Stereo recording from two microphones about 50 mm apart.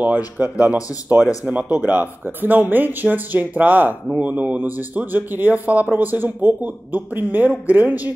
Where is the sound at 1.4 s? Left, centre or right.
Right.